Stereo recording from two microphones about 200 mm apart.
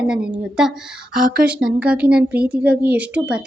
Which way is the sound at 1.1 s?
45° right (ahead or behind).